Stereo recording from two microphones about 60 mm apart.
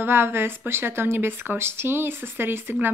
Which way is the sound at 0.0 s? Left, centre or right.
Right.